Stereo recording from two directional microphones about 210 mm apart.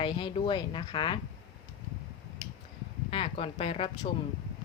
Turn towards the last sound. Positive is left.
turn(degrees=25)  # may be behind; listen again after turning